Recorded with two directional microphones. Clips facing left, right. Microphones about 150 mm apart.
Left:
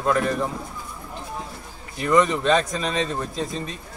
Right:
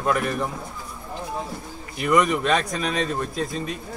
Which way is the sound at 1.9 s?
10° right (ahead or behind).